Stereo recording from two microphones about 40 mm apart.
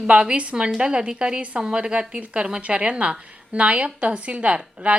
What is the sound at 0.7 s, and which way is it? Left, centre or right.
A woman's voice, right.